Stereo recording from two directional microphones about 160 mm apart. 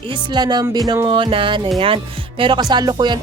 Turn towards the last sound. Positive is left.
turn(degrees=-30)  # may be behind; listen again after turning